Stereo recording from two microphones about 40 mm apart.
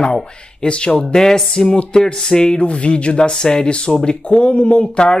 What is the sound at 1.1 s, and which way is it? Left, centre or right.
Speech, centre.